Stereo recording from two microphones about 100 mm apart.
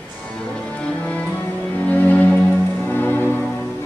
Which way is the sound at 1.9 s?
15° left (ahead or behind).